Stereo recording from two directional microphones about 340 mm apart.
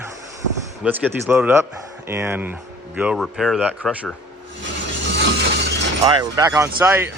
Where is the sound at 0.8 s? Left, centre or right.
Centre.